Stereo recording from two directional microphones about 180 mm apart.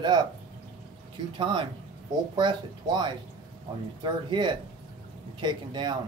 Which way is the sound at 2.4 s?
25° right (ahead or behind).